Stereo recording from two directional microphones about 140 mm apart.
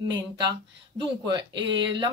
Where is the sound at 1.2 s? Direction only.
30° right (ahead or behind).